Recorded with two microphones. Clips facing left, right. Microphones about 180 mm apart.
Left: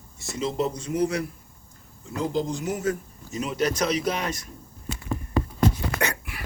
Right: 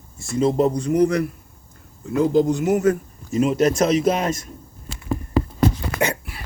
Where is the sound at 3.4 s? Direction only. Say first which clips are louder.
Right 8 dB; 45° right (ahead or behind).